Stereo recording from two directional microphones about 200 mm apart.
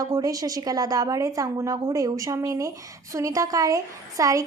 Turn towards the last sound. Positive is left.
turn(degrees=-15)  # may be behind; listen again after turning